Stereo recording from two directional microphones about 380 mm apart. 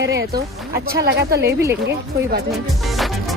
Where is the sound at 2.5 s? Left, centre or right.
Centre.